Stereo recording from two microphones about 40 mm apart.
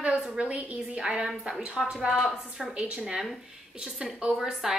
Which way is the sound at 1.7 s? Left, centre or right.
Centre.